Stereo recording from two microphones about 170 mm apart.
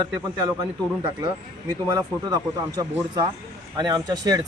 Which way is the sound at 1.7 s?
20° right (ahead or behind).